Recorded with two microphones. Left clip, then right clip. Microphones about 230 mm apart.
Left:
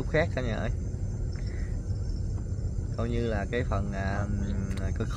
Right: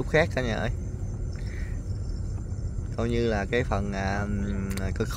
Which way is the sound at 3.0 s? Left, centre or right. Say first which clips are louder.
Right 5 dB; right.